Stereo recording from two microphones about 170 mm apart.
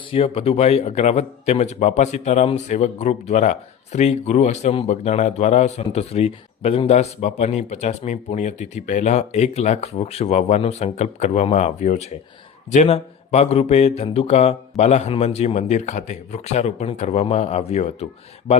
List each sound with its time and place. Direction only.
0.1 s speech: 35° left (ahead or behind)